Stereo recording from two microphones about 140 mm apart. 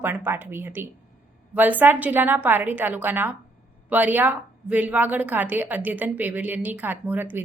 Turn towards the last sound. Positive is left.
turn(degrees=-15)  # may be behind; listen again after turning